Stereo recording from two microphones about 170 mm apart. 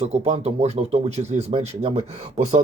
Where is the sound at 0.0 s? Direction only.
40° right (ahead or behind).